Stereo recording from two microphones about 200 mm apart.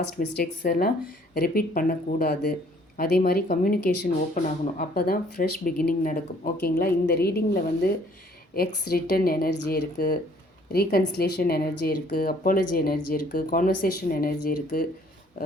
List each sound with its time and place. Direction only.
0.3 s speech: 50° left (ahead or behind)
8.5 s speech: 50° left (ahead or behind)